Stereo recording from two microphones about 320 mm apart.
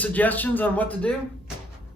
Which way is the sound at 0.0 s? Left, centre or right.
Centre.